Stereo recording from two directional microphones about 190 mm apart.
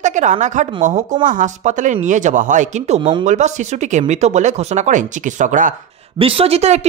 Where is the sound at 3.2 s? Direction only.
40° right (ahead or behind).